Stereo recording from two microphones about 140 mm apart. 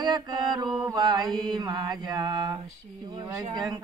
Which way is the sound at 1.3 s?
35° right (ahead or behind).